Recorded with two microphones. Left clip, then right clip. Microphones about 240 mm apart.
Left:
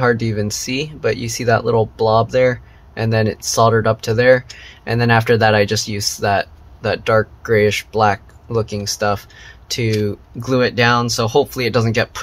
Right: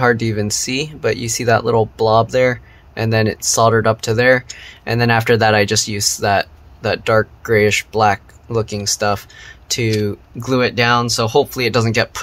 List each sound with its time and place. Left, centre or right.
0.0 s speech: centre